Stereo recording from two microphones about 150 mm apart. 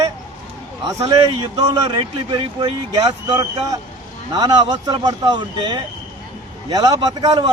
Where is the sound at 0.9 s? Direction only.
25° right (ahead or behind).